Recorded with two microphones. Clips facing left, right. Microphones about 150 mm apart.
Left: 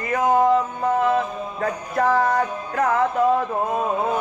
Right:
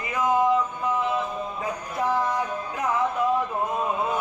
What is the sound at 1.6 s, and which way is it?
A man's voice, 70° left (ahead or behind).